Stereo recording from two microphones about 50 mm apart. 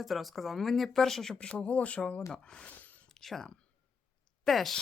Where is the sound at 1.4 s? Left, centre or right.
Left.